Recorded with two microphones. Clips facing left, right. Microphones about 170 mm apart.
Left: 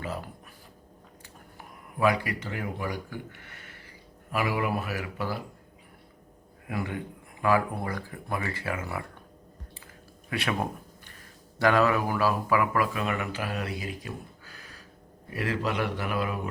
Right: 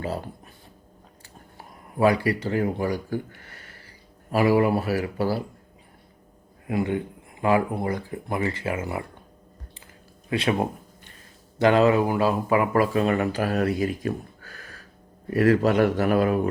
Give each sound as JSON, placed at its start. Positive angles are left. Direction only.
{"t": 0.0, "sound": "speech", "side_deg": -30}
{"t": 1.5, "sound": "speech", "side_deg": -35}
{"t": 6.7, "sound": "speech", "side_deg": -25}
{"t": 10.2, "sound": "a sound", "side_deg": -25}
{"t": 11.6, "sound": "a man's voice", "side_deg": -25}